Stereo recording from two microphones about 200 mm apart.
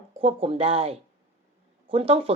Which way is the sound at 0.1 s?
30° right (ahead or behind).